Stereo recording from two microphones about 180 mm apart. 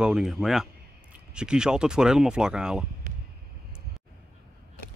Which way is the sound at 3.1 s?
45° right (ahead or behind).